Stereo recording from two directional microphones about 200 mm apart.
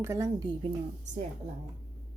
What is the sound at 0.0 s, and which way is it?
Speech, 15° right (ahead or behind).